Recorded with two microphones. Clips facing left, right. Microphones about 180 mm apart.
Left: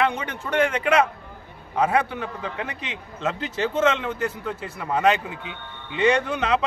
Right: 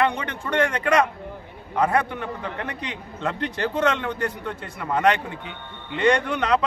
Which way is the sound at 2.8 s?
90° left.